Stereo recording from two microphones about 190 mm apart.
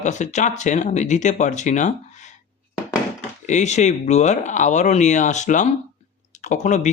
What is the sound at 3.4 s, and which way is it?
Speech, 40° left (ahead or behind).